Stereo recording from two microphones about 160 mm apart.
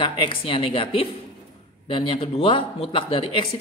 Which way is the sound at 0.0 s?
30° left (ahead or behind).